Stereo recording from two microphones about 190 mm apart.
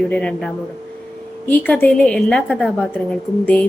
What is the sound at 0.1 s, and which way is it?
A woman's voice, 5° left (ahead or behind).